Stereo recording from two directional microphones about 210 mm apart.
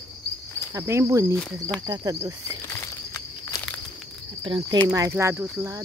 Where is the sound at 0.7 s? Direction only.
15° right (ahead or behind).